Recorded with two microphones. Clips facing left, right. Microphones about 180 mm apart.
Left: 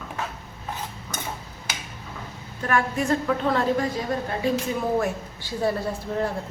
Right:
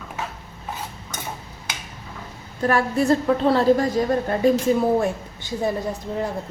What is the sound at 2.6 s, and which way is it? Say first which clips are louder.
A woman's voice: right 5 dB; 35° right (ahead or behind).